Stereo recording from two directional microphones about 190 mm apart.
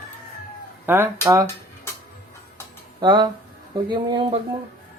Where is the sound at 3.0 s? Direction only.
20° right (ahead or behind).